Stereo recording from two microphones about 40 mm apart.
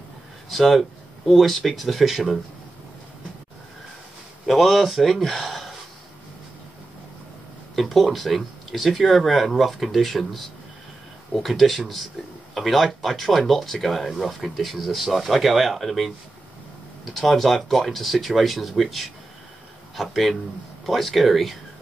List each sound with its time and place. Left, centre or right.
0.5 s speech: centre
4.5 s speech: centre
7.7 s speech: centre
17.1 s speech: centre